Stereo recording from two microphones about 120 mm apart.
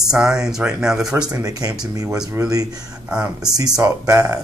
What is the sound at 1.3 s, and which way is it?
Speech, 30° right (ahead or behind).